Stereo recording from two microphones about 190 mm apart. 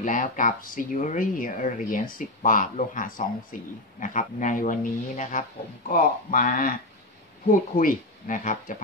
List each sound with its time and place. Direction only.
0.0 s speech: 45° left (ahead or behind)
7.7 s speech: 45° left (ahead or behind)